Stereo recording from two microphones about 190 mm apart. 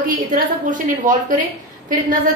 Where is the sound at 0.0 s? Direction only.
45° right (ahead or behind).